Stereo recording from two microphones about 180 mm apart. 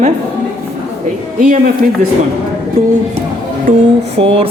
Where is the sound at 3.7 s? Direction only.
50° right (ahead or behind).